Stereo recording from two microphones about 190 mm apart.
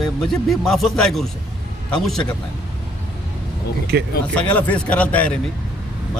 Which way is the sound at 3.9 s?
60° right (ahead or behind).